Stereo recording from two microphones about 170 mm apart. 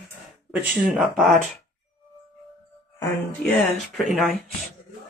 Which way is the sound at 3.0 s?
10° left (ahead or behind).